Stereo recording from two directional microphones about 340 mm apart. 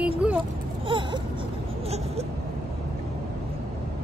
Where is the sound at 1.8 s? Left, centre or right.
Centre.